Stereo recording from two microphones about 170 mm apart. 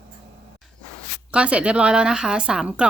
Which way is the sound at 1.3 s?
5° right (ahead or behind).